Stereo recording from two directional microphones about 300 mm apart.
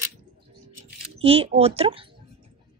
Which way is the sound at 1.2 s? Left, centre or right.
Centre.